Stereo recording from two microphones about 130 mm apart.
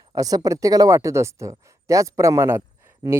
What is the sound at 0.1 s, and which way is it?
Speech, 30° right (ahead or behind).